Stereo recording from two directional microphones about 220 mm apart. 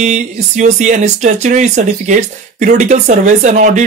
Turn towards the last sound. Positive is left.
turn(degrees=-35)  # may be behind; listen again after turning